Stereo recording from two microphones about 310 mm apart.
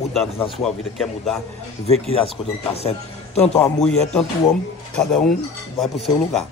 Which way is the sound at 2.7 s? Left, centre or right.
Centre.